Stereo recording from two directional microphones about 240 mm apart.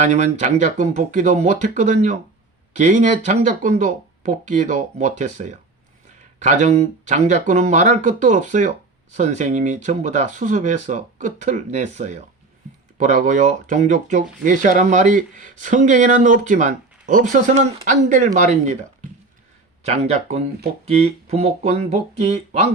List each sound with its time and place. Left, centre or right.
0.0 s speech: right
19.8 s speech: right